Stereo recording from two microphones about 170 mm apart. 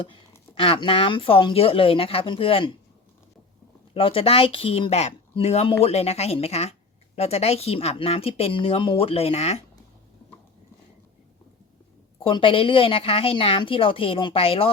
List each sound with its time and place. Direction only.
0.0 s speech: 30° left (ahead or behind)
3.9 s speech: 35° left (ahead or behind)
12.2 s speech: 30° left (ahead or behind)